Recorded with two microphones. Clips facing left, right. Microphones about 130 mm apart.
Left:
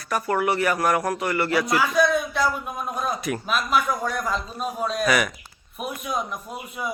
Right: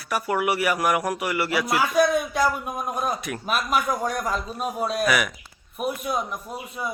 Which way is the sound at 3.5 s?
45° right (ahead or behind).